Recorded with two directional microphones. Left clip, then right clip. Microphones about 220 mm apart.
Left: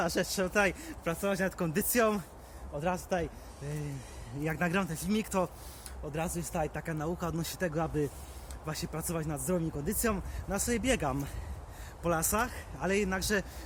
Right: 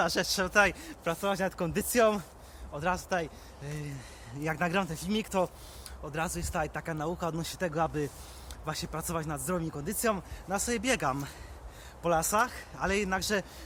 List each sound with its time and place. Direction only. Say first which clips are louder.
0.0 s speech: right 2 dB; 5° right (ahead or behind)
6.1 s speech: right 2 dB; 10° right (ahead or behind)